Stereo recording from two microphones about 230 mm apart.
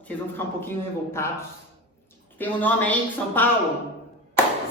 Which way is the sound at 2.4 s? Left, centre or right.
Centre.